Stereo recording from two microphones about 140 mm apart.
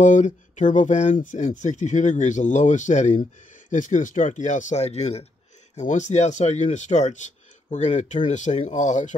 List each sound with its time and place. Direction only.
0.0 s speech: 60° left (ahead or behind)